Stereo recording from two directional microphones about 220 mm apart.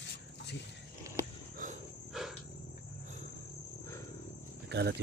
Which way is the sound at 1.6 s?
35° right (ahead or behind).